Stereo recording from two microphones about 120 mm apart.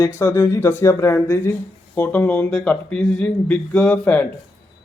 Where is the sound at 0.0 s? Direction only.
20° left (ahead or behind).